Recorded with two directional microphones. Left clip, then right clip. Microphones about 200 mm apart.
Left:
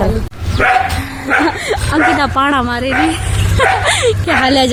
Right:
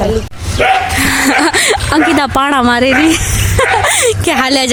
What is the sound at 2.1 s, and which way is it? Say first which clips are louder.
Speech: right 2 dB; 40° right (ahead or behind).